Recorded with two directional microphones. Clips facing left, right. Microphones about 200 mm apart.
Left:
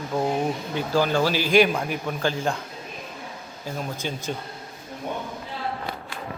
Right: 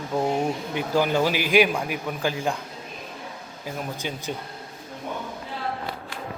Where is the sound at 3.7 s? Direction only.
15° right (ahead or behind).